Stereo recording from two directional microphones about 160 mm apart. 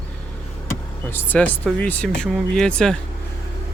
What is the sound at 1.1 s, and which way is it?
Speech, 10° left (ahead or behind).